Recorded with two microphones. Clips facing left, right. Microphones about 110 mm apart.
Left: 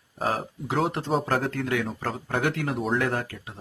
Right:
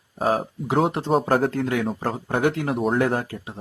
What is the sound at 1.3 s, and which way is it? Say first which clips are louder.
Speech: right 5 dB; 35° right (ahead or behind).